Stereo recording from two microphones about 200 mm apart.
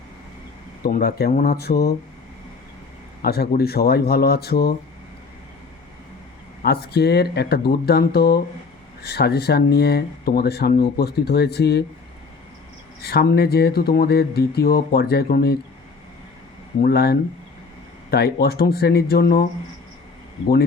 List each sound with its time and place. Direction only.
0.8 s speech: 45° left (ahead or behind)
3.2 s speech: 50° left (ahead or behind)
6.6 s speech: 55° left (ahead or behind)
13.0 s speech: 50° left (ahead or behind)
16.8 s speech: 50° left (ahead or behind)